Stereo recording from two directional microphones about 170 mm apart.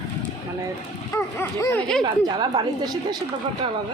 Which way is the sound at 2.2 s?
25° right (ahead or behind).